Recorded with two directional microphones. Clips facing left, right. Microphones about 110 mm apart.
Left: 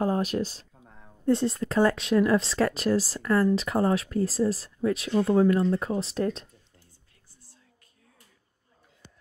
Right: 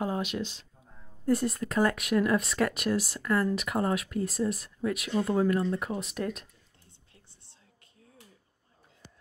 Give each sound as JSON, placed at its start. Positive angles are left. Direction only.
{"t": 0.0, "sound": "speech", "side_deg": 40}
{"t": 1.2, "sound": "speech", "side_deg": 25}